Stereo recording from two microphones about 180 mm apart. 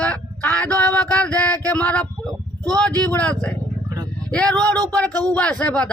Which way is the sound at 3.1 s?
5° left (ahead or behind).